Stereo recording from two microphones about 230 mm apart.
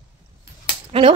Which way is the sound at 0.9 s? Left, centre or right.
Right.